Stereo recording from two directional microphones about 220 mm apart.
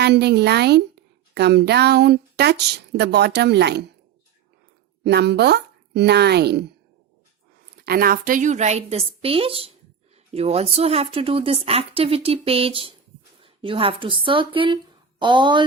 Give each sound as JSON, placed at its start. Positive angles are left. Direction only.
{"t": 0.0, "sound": "a woman's voice", "side_deg": -50}
{"t": 5.0, "sound": "a woman's voice", "side_deg": -50}
{"t": 7.8, "sound": "a woman's voice", "side_deg": -45}